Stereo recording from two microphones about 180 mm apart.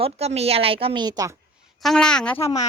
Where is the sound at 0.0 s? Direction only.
35° right (ahead or behind); by 1.4 s 20° right (ahead or behind).